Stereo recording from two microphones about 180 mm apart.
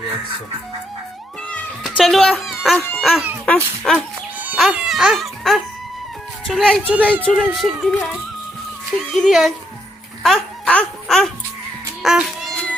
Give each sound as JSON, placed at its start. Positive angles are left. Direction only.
{"t": 1.5, "sound": "speech", "side_deg": 5}
{"t": 4.4, "sound": "music", "side_deg": -5}
{"t": 6.5, "sound": "speech", "side_deg": 5}
{"t": 6.8, "sound": "a child's voice", "side_deg": -10}
{"t": 9.1, "sound": "speech", "side_deg": 0}
{"t": 12.0, "sound": "a sound", "side_deg": -5}